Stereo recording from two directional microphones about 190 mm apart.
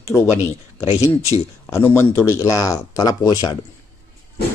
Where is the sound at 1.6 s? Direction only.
10° left (ahead or behind).